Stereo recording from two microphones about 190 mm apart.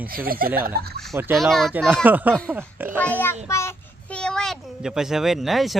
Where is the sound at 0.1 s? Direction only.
50° right (ahead or behind).